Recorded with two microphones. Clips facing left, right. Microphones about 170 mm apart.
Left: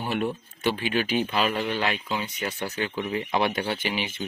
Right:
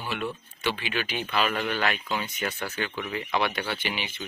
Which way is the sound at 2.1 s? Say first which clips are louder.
Left 1 dB; 10° left (ahead or behind).